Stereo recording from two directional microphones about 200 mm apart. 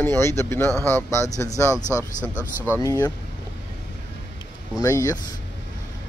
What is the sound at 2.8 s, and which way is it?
Speech, 15° left (ahead or behind).